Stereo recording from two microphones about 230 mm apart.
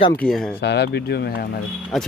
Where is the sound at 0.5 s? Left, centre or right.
Left.